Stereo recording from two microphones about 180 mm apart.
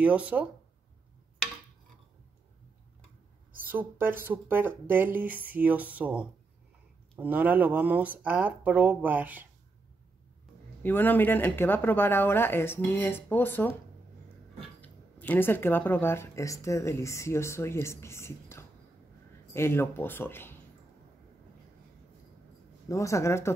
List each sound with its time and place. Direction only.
0.0 s speech: 10° right (ahead or behind)
3.6 s speech: 10° right (ahead or behind)
10.8 s speech: 10° left (ahead or behind)
14.8 s speech: 10° left (ahead or behind)
22.8 s speech: 15° left (ahead or behind)